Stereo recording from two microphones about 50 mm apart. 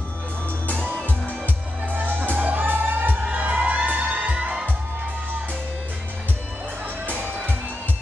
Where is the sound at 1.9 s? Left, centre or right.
Right.